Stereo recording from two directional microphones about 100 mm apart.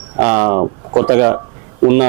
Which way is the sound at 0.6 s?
25° right (ahead or behind).